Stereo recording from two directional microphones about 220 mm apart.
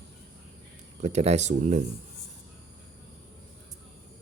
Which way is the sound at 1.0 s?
30° right (ahead or behind).